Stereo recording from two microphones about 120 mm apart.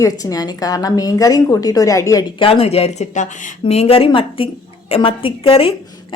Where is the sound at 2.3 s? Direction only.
50° left (ahead or behind).